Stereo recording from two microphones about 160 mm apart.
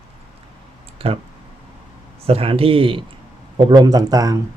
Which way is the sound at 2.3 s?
35° right (ahead or behind).